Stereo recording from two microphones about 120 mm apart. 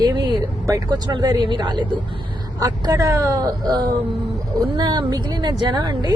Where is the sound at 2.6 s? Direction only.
30° right (ahead or behind).